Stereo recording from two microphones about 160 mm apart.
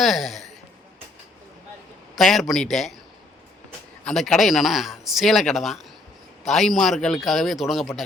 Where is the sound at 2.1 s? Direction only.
Centre (ahead or behind).